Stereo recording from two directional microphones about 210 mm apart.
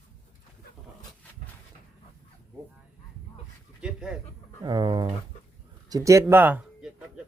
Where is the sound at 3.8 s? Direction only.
5° right (ahead or behind).